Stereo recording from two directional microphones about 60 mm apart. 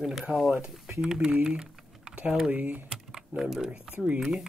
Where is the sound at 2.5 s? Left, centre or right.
Right.